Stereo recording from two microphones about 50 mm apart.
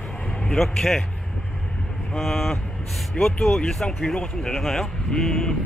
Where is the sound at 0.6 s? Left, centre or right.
Centre.